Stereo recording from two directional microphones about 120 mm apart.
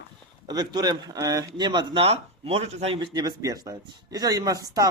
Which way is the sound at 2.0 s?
50° right (ahead or behind).